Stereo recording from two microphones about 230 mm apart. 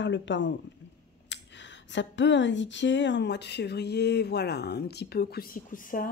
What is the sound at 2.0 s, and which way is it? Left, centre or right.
A woman's voice, left.